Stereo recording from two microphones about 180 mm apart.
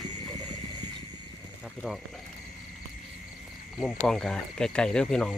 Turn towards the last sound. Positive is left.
turn(degrees=5)  # may be behind; listen again after turning